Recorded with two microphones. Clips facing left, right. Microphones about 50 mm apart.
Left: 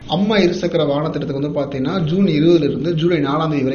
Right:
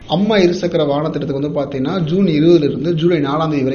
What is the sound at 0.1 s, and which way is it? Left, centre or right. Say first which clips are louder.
A man's voice: right 2 dB; centre.